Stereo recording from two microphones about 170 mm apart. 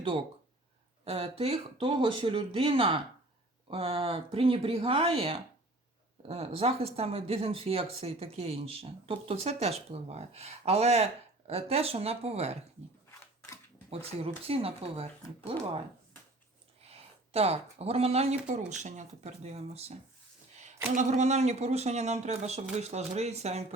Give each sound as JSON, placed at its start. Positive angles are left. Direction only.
{"t": 1.0, "sound": "speech", "side_deg": -35}
{"t": 13.1, "sound": "a sound", "side_deg": 15}
{"t": 13.9, "sound": "speech", "side_deg": -35}
{"t": 16.8, "sound": "speech", "side_deg": -35}